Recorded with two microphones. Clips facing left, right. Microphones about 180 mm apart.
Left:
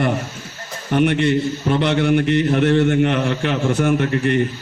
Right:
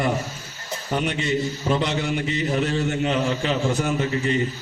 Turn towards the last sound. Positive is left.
turn(degrees=65)  # may be behind; listen again after turning